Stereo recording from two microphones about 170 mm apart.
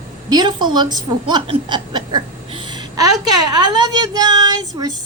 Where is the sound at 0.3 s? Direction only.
25° right (ahead or behind).